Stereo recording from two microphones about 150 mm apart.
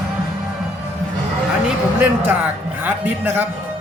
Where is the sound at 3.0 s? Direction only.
15° right (ahead or behind).